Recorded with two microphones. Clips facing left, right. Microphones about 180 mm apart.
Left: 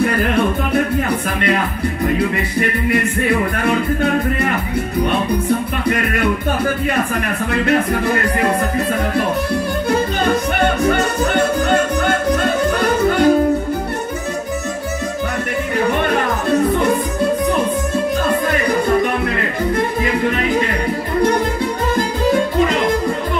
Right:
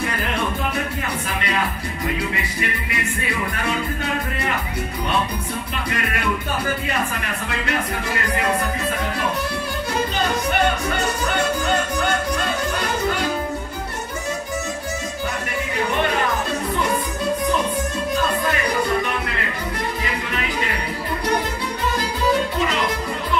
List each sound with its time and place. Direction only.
0.0 s music: 55° left (ahead or behind)
2.6 s music: 55° left (ahead or behind)
10.9 s music: 55° left (ahead or behind)